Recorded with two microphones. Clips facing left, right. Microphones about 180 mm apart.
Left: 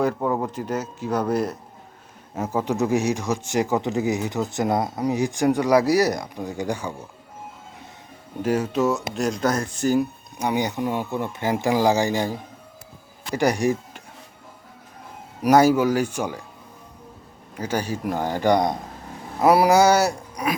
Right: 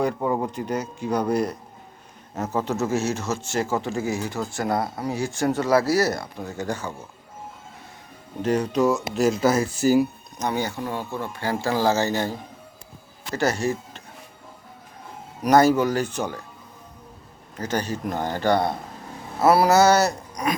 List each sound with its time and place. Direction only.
0.0 s speech: centre (ahead or behind); by 6.9 s 15° left (ahead or behind)
8.4 s speech: 5° left (ahead or behind)
10.3 s speech: 15° left (ahead or behind)
13.3 s speech: 15° left (ahead or behind)
15.4 s speech: 10° left (ahead or behind)
17.6 s speech: 10° left (ahead or behind)